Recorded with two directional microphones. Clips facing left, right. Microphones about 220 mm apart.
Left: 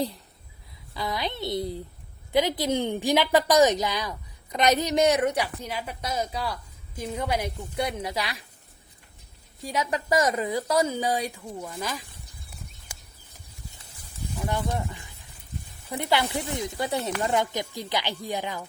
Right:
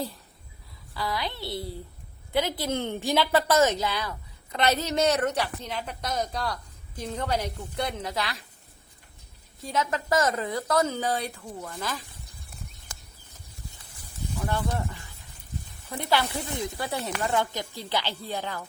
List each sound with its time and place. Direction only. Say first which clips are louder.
0.9 s a woman's voice: left 1 dB; 20° left (ahead or behind)
9.6 s a woman's voice: even; 15° left (ahead or behind)
12.9 s bird flight: even; 10° left (ahead or behind)
14.3 s a woman's voice: left 1 dB; 15° left (ahead or behind)